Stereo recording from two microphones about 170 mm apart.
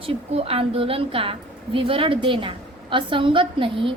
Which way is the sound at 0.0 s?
35° right (ahead or behind).